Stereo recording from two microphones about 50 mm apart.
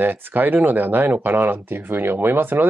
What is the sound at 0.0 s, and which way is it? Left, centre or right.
Speech, right.